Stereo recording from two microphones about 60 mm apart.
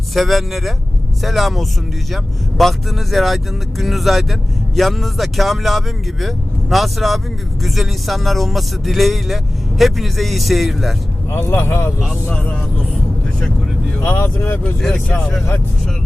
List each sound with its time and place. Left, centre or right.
0.1 s speech: centre
11.3 s speech: left
14.0 s speech: left